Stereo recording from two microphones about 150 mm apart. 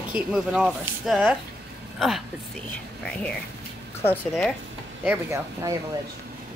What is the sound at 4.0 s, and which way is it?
Speech, 10° left (ahead or behind).